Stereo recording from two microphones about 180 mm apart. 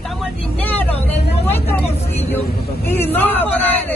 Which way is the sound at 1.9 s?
35° left (ahead or behind).